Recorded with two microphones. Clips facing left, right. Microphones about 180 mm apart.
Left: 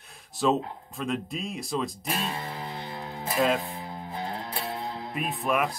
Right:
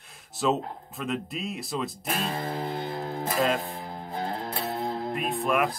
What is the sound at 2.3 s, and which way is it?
Music, 40° right (ahead or behind).